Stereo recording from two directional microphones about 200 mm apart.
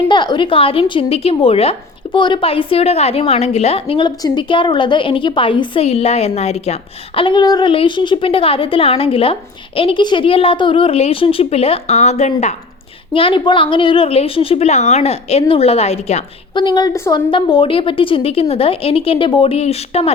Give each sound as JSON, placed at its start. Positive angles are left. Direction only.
{"t": 0.1, "sound": "a woman's voice", "side_deg": 20}